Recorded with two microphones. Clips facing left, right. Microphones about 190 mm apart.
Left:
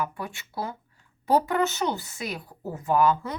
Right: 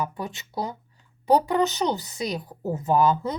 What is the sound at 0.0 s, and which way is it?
Speech, 20° right (ahead or behind).